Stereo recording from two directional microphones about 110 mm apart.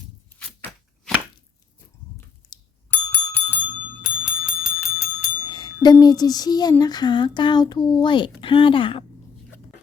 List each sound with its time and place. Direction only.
2.5 s doorbell: 40° left (ahead or behind)
2.9 s doorbell: 15° left (ahead or behind)
4.0 s bicycle bell: 5° right (ahead or behind)
5.5 s speech: 40° left (ahead or behind)